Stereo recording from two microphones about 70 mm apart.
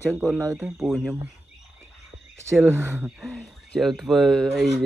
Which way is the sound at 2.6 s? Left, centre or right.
Right.